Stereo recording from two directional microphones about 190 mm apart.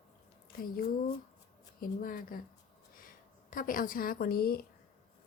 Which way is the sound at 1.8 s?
50° left (ahead or behind).